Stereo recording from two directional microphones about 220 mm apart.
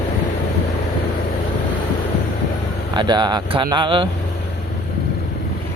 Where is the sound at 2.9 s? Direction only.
20° right (ahead or behind).